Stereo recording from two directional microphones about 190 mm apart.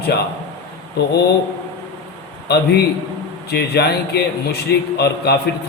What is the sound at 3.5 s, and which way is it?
A man's voice, 60° left (ahead or behind).